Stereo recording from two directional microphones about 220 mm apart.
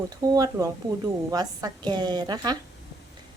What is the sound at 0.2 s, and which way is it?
A woman's voice, 15° right (ahead or behind).